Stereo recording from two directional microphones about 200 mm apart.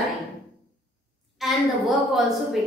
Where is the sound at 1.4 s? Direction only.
Centre (ahead or behind).